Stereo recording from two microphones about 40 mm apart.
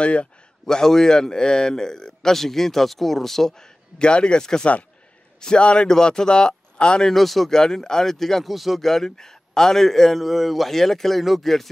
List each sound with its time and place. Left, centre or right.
0.0 s a man's voice: left
0.7 s a man's voice: centre
3.5 s a man's voice: centre
5.9 s speech: centre
7.1 s a man's voice: centre
7.5 s a man's voice: centre
8.5 s a man's voice: centre